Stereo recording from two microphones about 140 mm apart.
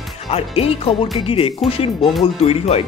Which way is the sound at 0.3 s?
45° left (ahead or behind).